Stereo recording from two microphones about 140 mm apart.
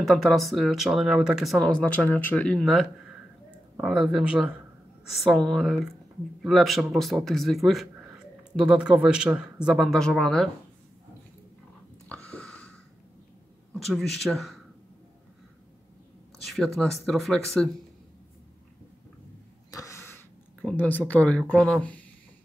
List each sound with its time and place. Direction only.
0.0 s speech: centre (ahead or behind)
12.1 s a sound: 10° left (ahead or behind)
13.7 s speech: centre (ahead or behind)
16.4 s speech: centre (ahead or behind)
19.7 s throat clearing: 20° left (ahead or behind)
20.6 s speech: 10° left (ahead or behind)